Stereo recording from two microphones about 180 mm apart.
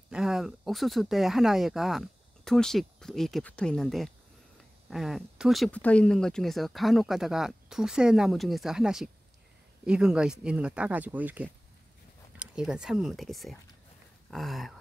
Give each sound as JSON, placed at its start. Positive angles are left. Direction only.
{"t": 0.1, "sound": "speech", "side_deg": 0}